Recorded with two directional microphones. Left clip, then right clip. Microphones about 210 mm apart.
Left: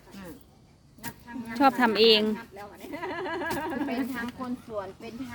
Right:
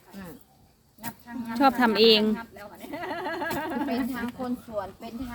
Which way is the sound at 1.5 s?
5° left (ahead or behind).